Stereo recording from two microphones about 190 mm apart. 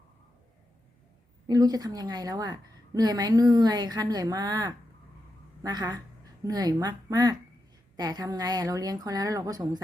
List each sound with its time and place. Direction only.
1.5 s a woman's voice: 20° right (ahead or behind)